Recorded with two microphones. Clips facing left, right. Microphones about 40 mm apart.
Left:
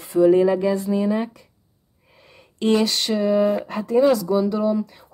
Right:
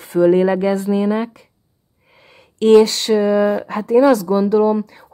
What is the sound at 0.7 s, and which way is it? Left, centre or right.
Speech, right.